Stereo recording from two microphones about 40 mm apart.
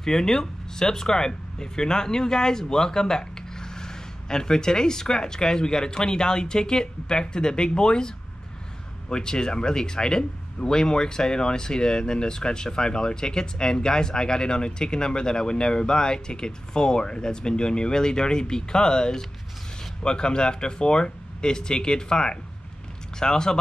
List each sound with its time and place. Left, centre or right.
0.0 s speech: centre
9.1 s speech: centre